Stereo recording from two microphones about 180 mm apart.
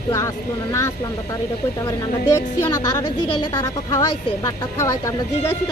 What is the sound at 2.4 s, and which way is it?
Speech, 15° left (ahead or behind).